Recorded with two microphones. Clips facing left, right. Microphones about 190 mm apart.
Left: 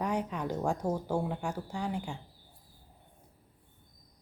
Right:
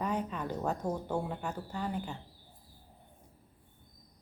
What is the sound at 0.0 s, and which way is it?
A woman's voice, 10° left (ahead or behind).